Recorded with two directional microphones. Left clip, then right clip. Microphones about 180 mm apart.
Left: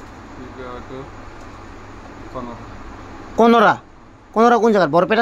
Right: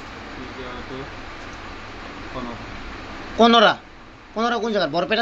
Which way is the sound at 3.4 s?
65° left (ahead or behind).